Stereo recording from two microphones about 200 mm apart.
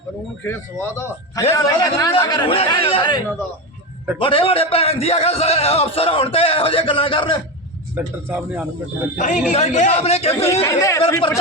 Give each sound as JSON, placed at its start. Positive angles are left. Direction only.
{"t": 0.4, "sound": "a man's voice", "side_deg": 10}
{"t": 7.9, "sound": "speech", "side_deg": -10}
{"t": 9.1, "sound": "a man's voice", "side_deg": 40}
{"t": 10.6, "sound": "speech", "side_deg": 15}